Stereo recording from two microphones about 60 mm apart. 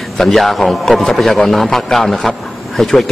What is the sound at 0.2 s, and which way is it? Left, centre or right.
A man's voice, centre.